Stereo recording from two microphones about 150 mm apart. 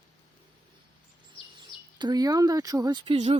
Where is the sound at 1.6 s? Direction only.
30° right (ahead or behind).